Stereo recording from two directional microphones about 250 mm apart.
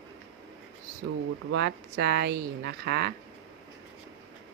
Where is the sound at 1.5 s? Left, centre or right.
Right.